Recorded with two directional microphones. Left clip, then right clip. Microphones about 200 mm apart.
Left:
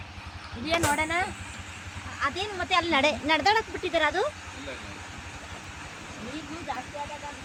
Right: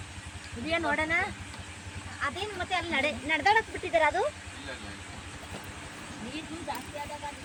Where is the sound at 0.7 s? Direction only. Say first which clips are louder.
Left 2 dB; 15° left (ahead or behind).